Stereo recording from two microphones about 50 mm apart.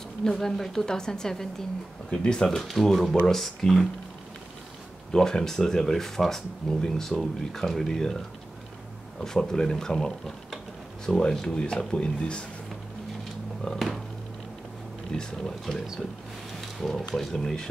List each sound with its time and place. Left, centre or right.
0.2 s speech: centre
5.1 s speech: centre
9.2 s speech: centre
13.6 s speech: centre
15.1 s speech: centre